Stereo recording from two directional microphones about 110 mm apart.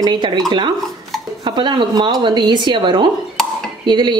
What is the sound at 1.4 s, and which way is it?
Speech, 45° right (ahead or behind).